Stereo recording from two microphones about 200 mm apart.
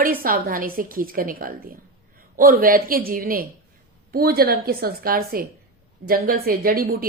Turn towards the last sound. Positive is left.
turn(degrees=-45)  # may be behind; listen again after turning